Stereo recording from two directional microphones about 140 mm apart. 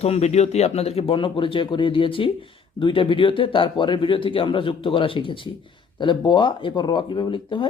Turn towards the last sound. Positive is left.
turn(degrees=35)  # may be behind; listen again after turning